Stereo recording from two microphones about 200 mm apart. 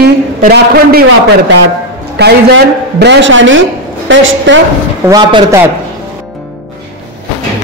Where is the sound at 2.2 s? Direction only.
55° right (ahead or behind).